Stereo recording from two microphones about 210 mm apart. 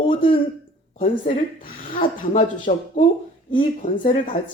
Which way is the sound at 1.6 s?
40° left (ahead or behind).